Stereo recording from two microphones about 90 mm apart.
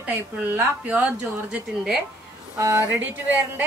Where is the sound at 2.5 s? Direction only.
35° right (ahead or behind).